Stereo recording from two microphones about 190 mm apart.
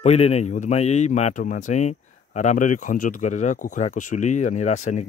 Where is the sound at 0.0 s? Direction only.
35° left (ahead or behind).